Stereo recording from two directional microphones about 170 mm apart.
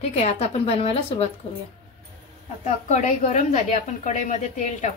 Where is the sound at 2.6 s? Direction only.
45° left (ahead or behind).